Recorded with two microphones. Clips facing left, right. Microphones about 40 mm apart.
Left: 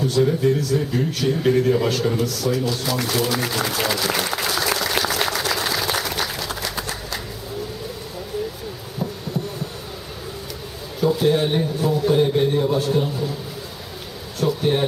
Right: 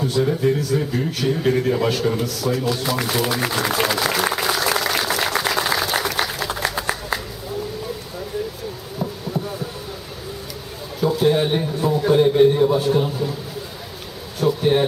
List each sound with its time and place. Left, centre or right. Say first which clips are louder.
0.0 s a man's voice: left 1 dB; centre
4.6 s applause: right 1 dB; centre
5.4 s a sound: right 2 dB; centre
9.0 s heart sounds: right 1 dB; centre
11.0 s a man's voice: right 1 dB; centre
14.3 s speech: right 3 dB; centre